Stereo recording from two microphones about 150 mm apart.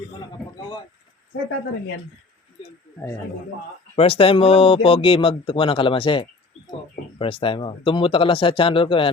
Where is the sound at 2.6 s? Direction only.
40° left (ahead or behind).